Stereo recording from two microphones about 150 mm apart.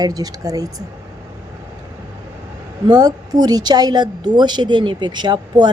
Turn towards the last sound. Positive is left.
turn(degrees=-30)  # may be behind; listen again after turning